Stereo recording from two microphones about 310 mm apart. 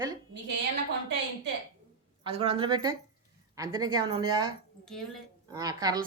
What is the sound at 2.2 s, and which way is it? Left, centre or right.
Speech, centre.